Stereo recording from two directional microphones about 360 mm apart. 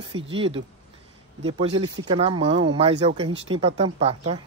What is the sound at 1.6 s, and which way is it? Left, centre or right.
Speech, centre.